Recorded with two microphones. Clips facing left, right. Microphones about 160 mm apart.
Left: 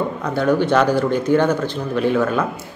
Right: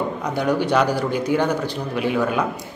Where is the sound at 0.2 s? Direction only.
15° right (ahead or behind).